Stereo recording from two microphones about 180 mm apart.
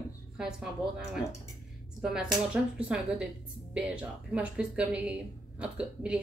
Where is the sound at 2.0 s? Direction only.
5° right (ahead or behind).